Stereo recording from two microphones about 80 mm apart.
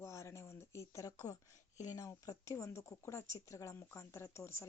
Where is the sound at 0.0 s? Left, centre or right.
Left.